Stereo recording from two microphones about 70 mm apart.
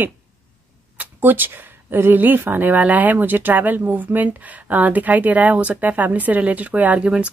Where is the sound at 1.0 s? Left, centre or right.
Right.